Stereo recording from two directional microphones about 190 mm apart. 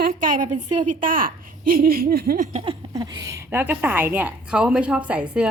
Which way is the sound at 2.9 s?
20° right (ahead or behind).